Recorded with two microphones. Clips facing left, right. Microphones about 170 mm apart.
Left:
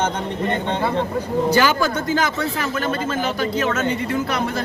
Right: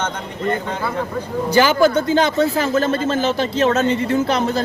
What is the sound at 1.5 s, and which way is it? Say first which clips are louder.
Speech: right 9 dB; 20° right (ahead or behind).